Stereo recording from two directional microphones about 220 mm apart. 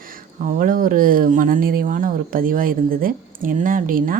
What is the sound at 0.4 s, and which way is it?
Speech, 40° right (ahead or behind).